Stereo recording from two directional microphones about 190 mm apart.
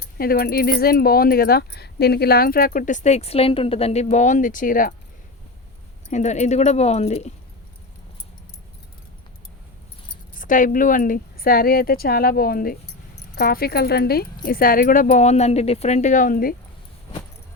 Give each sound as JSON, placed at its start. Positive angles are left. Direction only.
{"t": 0.2, "sound": "a woman's voice", "side_deg": 50}
{"t": 6.1, "sound": "speech", "side_deg": 40}
{"t": 10.3, "sound": "a woman's voice", "side_deg": 45}